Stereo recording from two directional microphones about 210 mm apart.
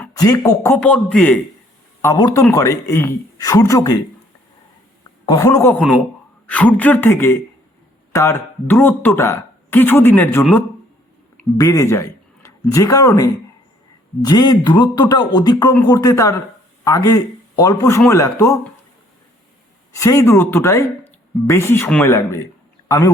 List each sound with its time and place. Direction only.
0.0 s speech: 15° left (ahead or behind)
2.0 s speech: 15° left (ahead or behind)
5.2 s speech: 20° left (ahead or behind)
11.5 s a man's voice: 15° left (ahead or behind)
19.9 s speech: 15° left (ahead or behind)